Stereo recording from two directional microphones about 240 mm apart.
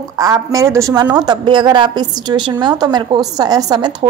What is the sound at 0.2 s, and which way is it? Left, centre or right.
A woman's voice, centre.